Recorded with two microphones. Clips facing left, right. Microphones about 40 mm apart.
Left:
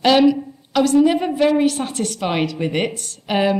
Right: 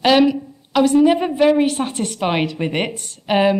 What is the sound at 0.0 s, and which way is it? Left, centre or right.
A woman's voice, centre.